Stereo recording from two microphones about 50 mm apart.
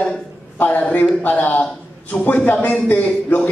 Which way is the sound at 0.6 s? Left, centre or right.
Left.